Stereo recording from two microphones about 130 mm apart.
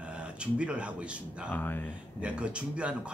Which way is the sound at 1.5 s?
15° left (ahead or behind).